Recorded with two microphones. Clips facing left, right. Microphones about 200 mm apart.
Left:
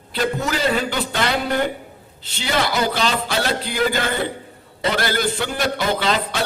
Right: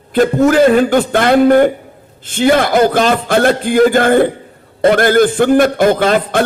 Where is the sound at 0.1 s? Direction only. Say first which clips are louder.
Right 12 dB; 50° right (ahead or behind).